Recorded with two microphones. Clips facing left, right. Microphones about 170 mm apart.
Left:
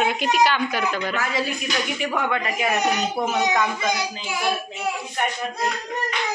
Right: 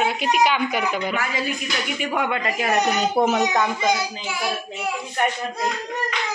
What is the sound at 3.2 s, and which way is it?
Speech, 55° right (ahead or behind).